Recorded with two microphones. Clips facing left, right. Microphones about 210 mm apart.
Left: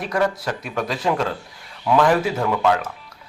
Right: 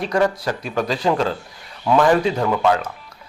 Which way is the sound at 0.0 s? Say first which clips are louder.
Right 3 dB; centre (ahead or behind).